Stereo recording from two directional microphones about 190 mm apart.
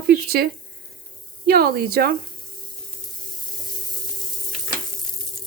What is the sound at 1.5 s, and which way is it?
Speech, 55° right (ahead or behind).